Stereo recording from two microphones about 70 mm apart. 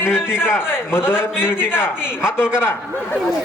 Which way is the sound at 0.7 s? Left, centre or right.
Left.